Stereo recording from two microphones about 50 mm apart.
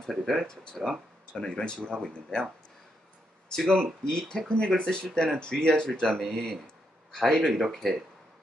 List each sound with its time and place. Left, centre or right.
0.0 s speech: centre
1.3 s speech: centre
3.5 s speech: centre